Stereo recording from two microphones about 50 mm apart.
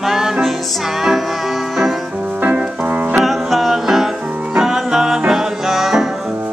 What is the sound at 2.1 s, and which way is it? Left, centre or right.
Music, centre.